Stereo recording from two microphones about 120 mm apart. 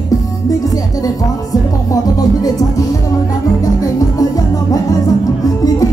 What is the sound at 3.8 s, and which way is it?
Music, 30° left (ahead or behind).